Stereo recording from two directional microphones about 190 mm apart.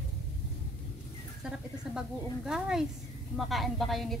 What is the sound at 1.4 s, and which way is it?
A woman's voice, 5° right (ahead or behind).